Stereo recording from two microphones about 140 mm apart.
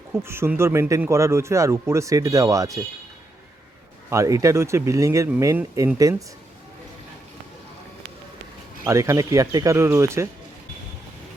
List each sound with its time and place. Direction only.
0.1 s speech: 15° right (ahead or behind)
4.1 s speech: 20° right (ahead or behind)
8.8 s speech: 20° right (ahead or behind)